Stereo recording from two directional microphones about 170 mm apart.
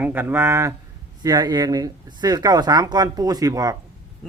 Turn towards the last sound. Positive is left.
turn(degrees=-20)  # may be behind; listen again after turning